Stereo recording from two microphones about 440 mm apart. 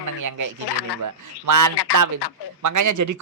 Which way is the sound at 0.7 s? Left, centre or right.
Left.